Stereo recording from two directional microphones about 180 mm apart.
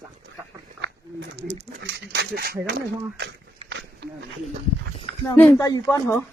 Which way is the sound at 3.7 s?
80° right.